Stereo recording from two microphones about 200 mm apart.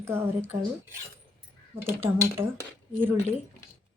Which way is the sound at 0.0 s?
10° right (ahead or behind).